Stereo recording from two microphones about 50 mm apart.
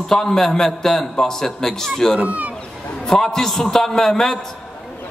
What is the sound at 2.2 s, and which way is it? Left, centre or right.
Speech, right.